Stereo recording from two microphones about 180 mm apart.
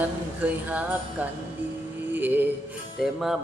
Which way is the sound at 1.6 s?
10° right (ahead or behind).